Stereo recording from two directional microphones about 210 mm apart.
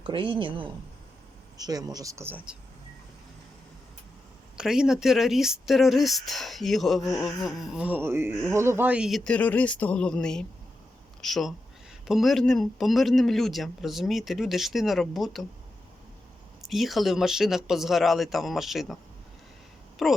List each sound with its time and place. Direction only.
0.0 s speech: 25° right (ahead or behind)
4.5 s speech: 5° right (ahead or behind)
16.6 s speech: centre (ahead or behind)
20.0 s speech: centre (ahead or behind)